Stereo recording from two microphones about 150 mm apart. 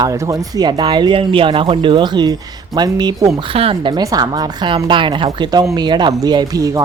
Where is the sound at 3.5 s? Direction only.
40° right (ahead or behind).